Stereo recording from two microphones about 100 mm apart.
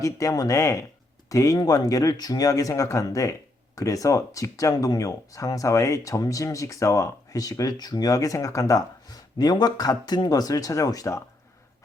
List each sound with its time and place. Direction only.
0.0 s speech: 35° left (ahead or behind)